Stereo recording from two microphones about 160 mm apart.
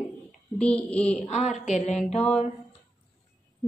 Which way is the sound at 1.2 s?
45° left (ahead or behind).